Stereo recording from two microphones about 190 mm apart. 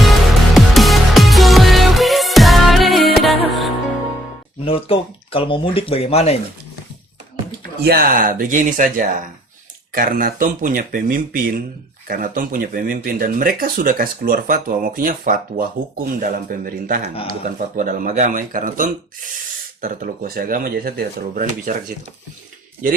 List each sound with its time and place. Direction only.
0.0 s music: centre (ahead or behind)
4.6 s speech: 30° left (ahead or behind)
7.9 s speech: 50° right (ahead or behind)